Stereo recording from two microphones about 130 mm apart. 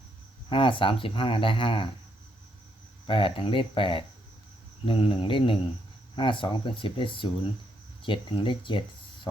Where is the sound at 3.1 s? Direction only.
40° left (ahead or behind).